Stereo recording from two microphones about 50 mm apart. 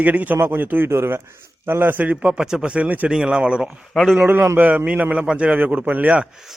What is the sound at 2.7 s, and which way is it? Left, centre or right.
Speech, right.